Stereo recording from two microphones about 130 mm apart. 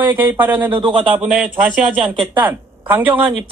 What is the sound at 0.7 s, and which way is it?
Speech, 35° right (ahead or behind).